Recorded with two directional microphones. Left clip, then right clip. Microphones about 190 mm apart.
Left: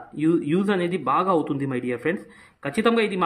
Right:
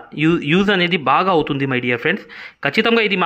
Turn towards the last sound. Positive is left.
turn(degrees=-20)  # may be behind; listen again after turning